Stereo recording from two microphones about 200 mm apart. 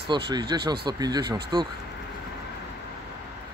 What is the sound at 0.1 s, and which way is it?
Speech, 20° right (ahead or behind).